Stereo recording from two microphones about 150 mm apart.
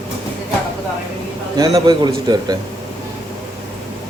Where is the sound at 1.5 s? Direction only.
30° right (ahead or behind).